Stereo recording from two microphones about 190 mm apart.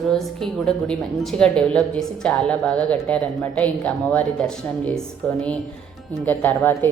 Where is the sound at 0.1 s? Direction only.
5° left (ahead or behind).